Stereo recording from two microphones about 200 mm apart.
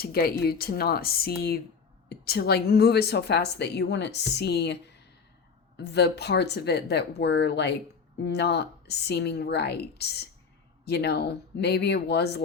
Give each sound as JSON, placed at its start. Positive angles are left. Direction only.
{"t": 0.0, "sound": "a woman's voice", "side_deg": 50}